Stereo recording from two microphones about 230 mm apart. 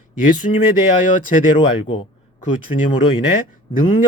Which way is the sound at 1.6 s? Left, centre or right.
Left.